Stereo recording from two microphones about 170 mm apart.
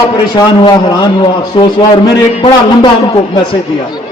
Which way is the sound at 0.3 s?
25° left (ahead or behind).